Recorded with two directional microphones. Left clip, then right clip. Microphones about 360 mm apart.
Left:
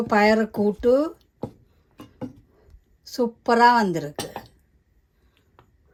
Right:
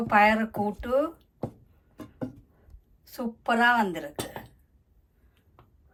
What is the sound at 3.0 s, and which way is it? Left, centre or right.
A woman's voice, centre.